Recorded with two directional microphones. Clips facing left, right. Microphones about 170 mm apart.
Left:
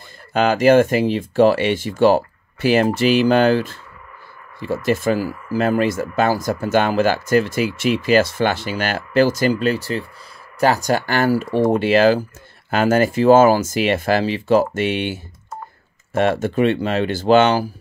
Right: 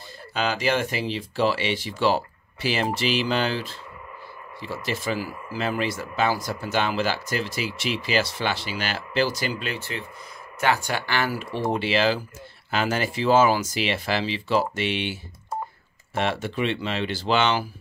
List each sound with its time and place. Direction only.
0.3 s speech: 50° left (ahead or behind)
16.2 s speech: 45° left (ahead or behind)